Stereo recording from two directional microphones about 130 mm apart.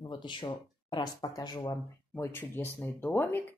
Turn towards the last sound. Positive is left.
turn(degrees=15)  # may be behind; listen again after turning